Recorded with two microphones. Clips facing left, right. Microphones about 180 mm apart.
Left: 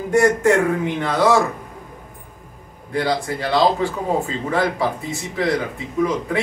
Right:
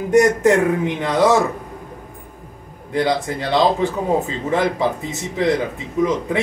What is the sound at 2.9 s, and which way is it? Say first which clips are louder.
Speech: right 2 dB; 20° right (ahead or behind).